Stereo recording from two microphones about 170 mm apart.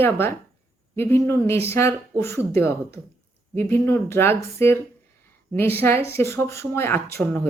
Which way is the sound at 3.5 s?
15° left (ahead or behind).